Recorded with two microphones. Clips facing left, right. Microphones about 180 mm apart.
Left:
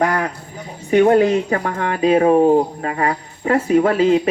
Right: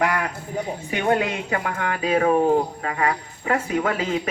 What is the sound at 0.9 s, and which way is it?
Speech, 35° left (ahead or behind).